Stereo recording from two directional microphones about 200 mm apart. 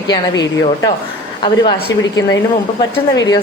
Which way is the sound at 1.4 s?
20° left (ahead or behind).